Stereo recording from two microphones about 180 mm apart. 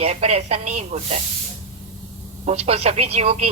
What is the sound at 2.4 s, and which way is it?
Speech, 35° right (ahead or behind).